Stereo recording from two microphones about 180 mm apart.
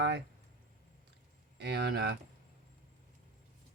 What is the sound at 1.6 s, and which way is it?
Speech, 65° right (ahead or behind).